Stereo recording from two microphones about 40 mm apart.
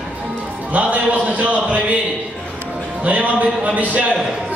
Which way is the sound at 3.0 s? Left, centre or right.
Right.